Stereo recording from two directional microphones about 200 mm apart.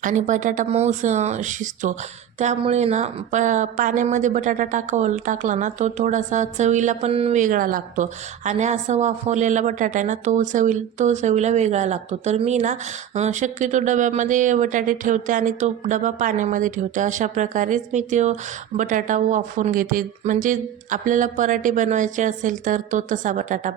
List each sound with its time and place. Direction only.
0.0 s a woman's voice: 40° right (ahead or behind)